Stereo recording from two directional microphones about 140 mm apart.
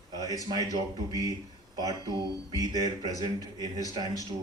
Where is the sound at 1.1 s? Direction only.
25° right (ahead or behind).